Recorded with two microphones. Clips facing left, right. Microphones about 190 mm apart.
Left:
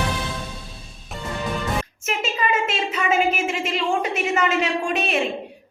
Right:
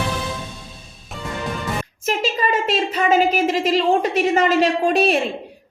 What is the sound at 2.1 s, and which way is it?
A woman's voice, 35° right (ahead or behind).